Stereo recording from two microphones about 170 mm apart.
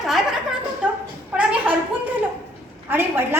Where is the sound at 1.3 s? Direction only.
10° right (ahead or behind).